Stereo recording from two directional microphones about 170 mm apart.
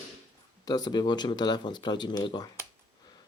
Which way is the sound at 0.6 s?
20° left (ahead or behind).